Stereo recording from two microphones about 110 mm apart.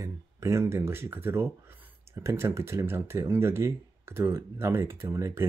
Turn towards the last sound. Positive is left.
turn(degrees=-25)  # may be behind; listen again after turning